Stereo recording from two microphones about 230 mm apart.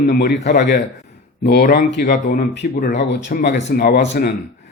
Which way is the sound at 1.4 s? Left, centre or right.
Left.